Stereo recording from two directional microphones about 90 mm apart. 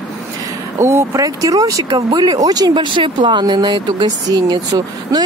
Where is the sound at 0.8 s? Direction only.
30° right (ahead or behind).